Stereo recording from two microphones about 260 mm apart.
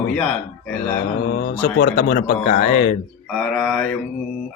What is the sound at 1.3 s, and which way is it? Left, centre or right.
Speech, left.